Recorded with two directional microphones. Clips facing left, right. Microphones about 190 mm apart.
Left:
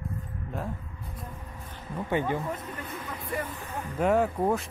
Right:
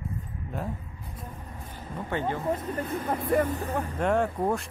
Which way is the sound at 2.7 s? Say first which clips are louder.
Right 8 dB; 45° right (ahead or behind).